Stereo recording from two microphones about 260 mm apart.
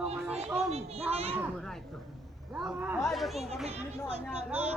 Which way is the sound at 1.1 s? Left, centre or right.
Right.